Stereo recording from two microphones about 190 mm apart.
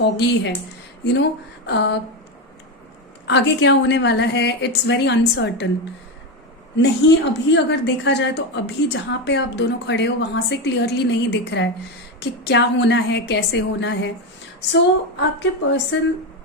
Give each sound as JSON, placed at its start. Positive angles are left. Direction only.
{"t": 0.0, "sound": "a woman's voice", "side_deg": 65}
{"t": 3.2, "sound": "a woman's voice", "side_deg": 65}
{"t": 6.8, "sound": "a woman's voice", "side_deg": 70}
{"t": 15.2, "sound": "a woman's voice", "side_deg": 70}